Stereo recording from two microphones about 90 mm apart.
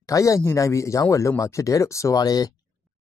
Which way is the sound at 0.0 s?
35° left (ahead or behind).